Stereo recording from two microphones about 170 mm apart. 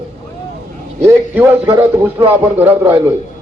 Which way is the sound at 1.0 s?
15° right (ahead or behind).